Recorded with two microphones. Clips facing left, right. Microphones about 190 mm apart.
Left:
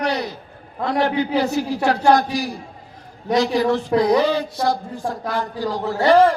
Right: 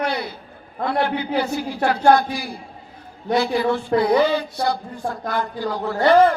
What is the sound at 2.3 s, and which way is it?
A man's voice, 40° left (ahead or behind).